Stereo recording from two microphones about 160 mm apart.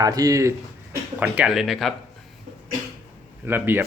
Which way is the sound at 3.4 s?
15° right (ahead or behind).